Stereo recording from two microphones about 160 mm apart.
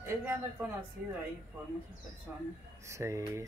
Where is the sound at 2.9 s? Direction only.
20° right (ahead or behind).